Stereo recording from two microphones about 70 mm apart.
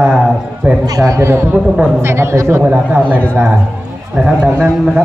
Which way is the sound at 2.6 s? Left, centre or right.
Right.